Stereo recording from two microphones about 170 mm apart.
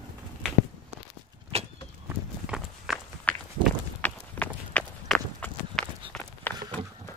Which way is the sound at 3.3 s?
10° left (ahead or behind).